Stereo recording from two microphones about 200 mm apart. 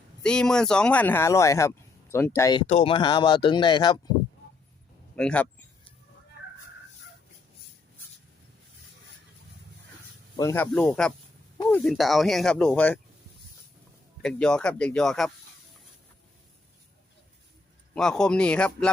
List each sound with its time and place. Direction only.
0.2 s speech: 5° left (ahead or behind)
2.6 s speech: 30° left (ahead or behind)
5.1 s speech: 5° left (ahead or behind)
10.3 s speech: 15° left (ahead or behind)
14.2 s speech: 5° left (ahead or behind)
17.9 s speech: 5° left (ahead or behind)